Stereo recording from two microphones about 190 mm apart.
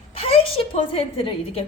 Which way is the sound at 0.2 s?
30° left (ahead or behind).